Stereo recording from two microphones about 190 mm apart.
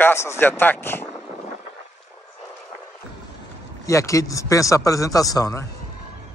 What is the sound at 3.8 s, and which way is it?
A man's voice, 15° left (ahead or behind).